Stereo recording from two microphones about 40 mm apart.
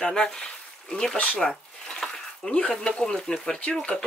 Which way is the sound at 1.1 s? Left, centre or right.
Left.